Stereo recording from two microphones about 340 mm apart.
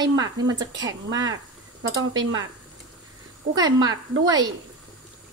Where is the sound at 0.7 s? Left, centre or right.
Right.